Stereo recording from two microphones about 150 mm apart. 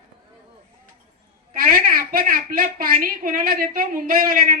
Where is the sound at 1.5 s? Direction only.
65° right (ahead or behind).